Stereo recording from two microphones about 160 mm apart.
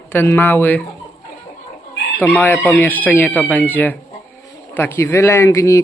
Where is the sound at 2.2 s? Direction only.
10° left (ahead or behind).